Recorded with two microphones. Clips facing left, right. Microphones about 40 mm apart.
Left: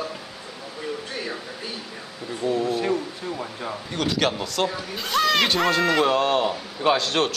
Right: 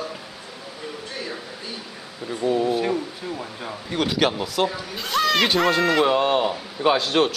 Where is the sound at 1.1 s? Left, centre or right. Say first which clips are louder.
Left 1 dB; centre.